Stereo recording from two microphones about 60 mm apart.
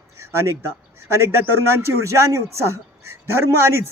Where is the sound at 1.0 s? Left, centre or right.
Right.